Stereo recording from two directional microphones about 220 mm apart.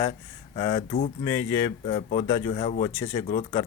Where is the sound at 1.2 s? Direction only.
10° left (ahead or behind).